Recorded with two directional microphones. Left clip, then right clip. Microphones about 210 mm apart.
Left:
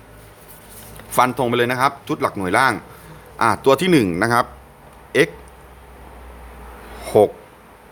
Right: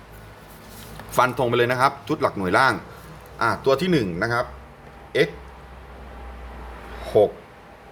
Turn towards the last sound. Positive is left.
turn(degrees=40)  # may be behind; listen again after turning